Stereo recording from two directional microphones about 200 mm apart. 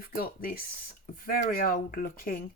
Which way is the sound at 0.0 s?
50° left (ahead or behind).